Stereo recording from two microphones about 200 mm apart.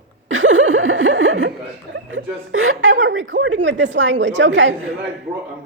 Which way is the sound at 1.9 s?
70° right (ahead or behind).